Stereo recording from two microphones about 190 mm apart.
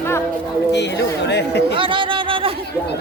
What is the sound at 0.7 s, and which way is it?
Speech, 65° left (ahead or behind).